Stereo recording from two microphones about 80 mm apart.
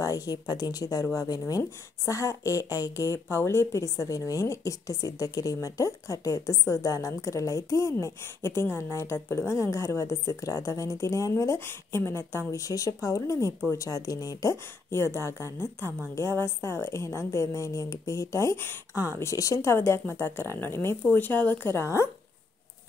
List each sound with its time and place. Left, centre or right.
0.0 s a woman's voice: left
14.9 s a woman's voice: left
21.7 s a woman's voice: left